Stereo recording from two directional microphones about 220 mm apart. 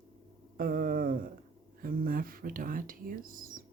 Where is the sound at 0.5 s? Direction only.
40° right (ahead or behind).